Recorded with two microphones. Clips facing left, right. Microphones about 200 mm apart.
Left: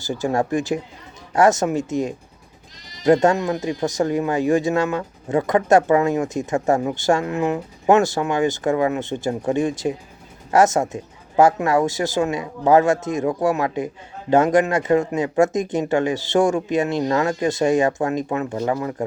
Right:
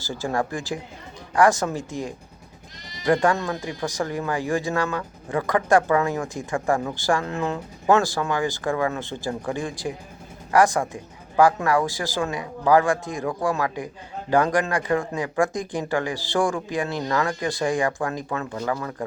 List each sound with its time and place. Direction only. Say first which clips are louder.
0.0 s speech: left 4 dB; 20° left (ahead or behind)